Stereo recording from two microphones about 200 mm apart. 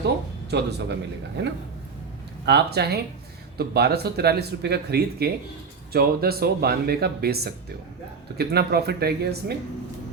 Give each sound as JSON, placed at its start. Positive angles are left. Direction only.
{"t": 0.5, "sound": "speech", "side_deg": -55}